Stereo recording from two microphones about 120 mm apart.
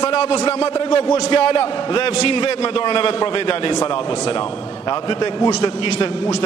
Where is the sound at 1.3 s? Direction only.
45° left (ahead or behind).